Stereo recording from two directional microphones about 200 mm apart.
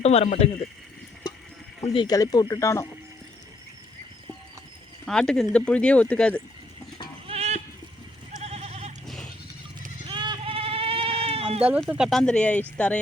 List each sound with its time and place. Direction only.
0.0 s speech: 30° left (ahead or behind)
1.9 s speech: 20° left (ahead or behind)
5.0 s speech: 5° left (ahead or behind)
7.3 s goat: 30° right (ahead or behind)
10.1 s sheep: 25° right (ahead or behind)
11.9 s speech: centre (ahead or behind)